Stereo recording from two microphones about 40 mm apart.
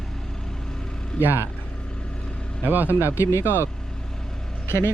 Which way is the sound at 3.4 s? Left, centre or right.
Left.